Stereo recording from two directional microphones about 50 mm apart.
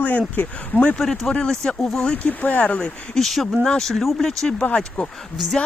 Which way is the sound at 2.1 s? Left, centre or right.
Left.